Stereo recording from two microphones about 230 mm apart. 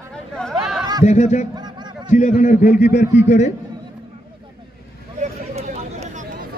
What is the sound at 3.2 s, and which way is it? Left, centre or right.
Speech, left.